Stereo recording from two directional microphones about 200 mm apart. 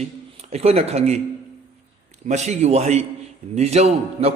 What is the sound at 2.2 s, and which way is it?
A man's voice, 35° right (ahead or behind).